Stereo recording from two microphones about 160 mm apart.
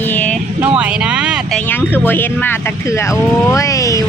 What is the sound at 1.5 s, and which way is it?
Speech, 10° left (ahead or behind).